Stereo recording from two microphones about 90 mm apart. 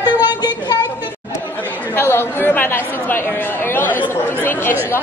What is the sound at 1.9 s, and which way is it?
Speech, 25° left (ahead or behind).